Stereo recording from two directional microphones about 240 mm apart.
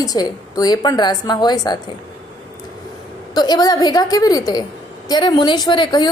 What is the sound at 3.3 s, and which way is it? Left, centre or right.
A woman's voice, centre.